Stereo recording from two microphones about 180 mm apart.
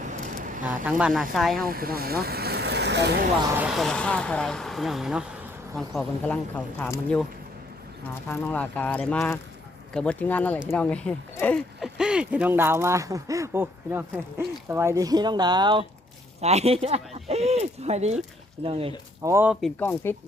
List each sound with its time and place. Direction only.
0.1 s a sound: 45° right (ahead or behind)
0.9 s speech: 5° right (ahead or behind)
1.6 s speech: 55° right (ahead or behind)
3.6 s speech: centre (ahead or behind)
8.3 s speech: 10° left (ahead or behind)
11.8 s speech: 5° right (ahead or behind); by 15.9 s 25° right (ahead or behind)
16.4 s speech: 35° right (ahead or behind)
19.2 s speech: 15° right (ahead or behind)
19.8 s speech: 10° left (ahead or behind)